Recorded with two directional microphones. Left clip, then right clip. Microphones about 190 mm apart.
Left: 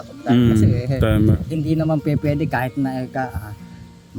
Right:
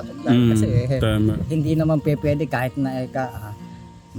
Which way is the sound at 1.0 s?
10° left (ahead or behind).